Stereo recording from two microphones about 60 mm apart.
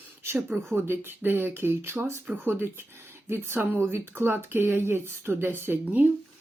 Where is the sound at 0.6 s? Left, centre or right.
Right.